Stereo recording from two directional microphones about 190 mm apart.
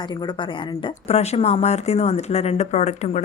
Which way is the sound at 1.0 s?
35° left (ahead or behind).